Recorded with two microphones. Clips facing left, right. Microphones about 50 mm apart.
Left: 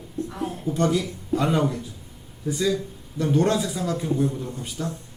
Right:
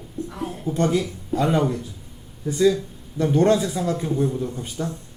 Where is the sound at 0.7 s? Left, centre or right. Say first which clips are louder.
Right 2 dB; right.